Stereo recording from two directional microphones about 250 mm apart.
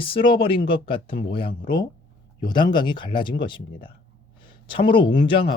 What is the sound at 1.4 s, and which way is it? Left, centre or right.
Speech, left.